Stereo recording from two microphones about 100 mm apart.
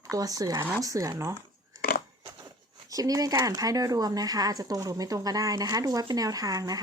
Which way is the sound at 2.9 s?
35° right (ahead or behind).